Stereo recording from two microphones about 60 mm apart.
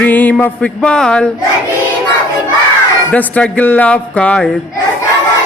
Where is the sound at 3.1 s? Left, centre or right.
Left.